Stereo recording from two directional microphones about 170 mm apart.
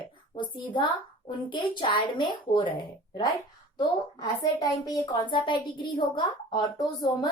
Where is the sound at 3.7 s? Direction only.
25° left (ahead or behind).